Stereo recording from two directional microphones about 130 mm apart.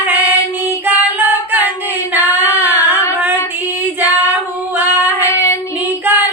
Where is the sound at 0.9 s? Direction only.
10° right (ahead or behind).